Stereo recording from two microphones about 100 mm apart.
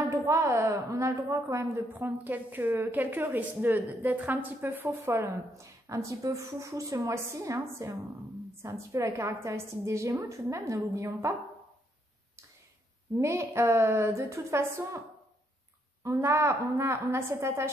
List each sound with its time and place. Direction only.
0.1 s a woman's voice: 30° right (ahead or behind)
2.0 s a woman's voice: 15° right (ahead or behind)
13.2 s a woman's voice: 30° right (ahead or behind)
16.0 s a woman's voice: 25° right (ahead or behind)